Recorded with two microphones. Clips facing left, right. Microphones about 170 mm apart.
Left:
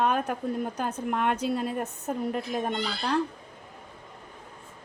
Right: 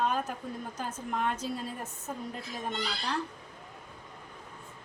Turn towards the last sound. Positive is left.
turn(degrees=65)  # may be behind; listen again after turning